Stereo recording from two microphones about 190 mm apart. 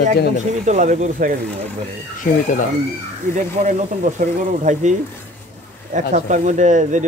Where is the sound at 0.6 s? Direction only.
40° right (ahead or behind).